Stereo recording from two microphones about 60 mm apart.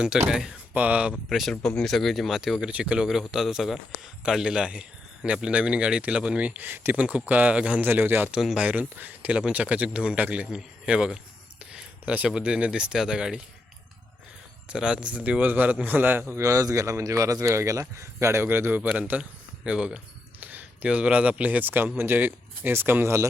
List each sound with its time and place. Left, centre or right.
0.3 s a man's voice: centre
0.7 s speech: right
1.3 s a man's voice: centre
3.1 s a man's voice: centre; by 6.9 s right
6.9 s a man's voice: right
8.3 s a man's voice: centre
8.5 s a man's voice: right
14.7 s a man's voice: centre; by 16.4 s right
16.4 s speech: right
18.4 s a man's voice: right
18.9 s a man's voice: right